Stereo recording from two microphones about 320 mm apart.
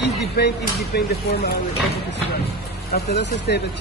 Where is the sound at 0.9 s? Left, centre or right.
Left.